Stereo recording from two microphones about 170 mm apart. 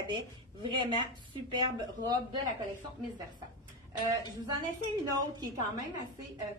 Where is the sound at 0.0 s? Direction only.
30° right (ahead or behind).